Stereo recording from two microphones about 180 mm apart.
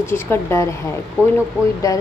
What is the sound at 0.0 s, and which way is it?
Speech, 15° left (ahead or behind).